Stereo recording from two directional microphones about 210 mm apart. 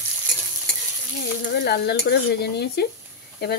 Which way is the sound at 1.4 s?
50° left (ahead or behind).